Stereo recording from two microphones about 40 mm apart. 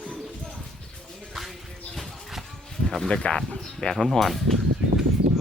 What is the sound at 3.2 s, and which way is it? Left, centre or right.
Speech, left.